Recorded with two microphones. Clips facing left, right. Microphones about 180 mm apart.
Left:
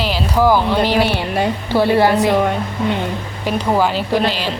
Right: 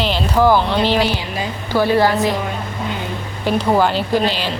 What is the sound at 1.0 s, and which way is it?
Speech, 60° left (ahead or behind).